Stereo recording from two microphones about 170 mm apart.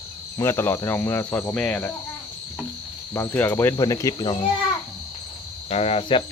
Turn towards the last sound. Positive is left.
turn(degrees=30)  # may be behind; listen again after turning